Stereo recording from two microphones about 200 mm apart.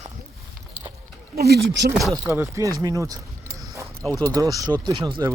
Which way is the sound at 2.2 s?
10° right (ahead or behind).